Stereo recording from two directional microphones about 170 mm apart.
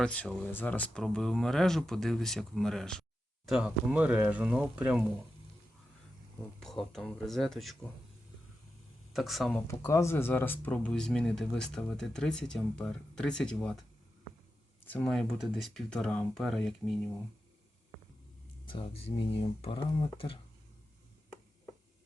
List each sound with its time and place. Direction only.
0.0 s speech: 5° left (ahead or behind)
6.6 s speech: centre (ahead or behind)
9.1 s speech: centre (ahead or behind)
9.6 s speech: 20° left (ahead or behind)
14.8 s speech: 5° left (ahead or behind)
18.6 s speech: 30° left (ahead or behind)